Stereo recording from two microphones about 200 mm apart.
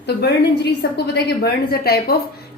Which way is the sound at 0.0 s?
55° left (ahead or behind).